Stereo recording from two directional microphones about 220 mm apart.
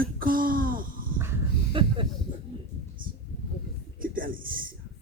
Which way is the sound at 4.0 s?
40° right (ahead or behind).